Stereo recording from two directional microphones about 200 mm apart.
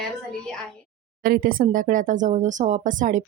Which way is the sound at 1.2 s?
45° right (ahead or behind).